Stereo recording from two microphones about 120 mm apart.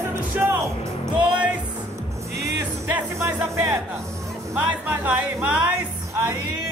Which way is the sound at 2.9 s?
15° right (ahead or behind).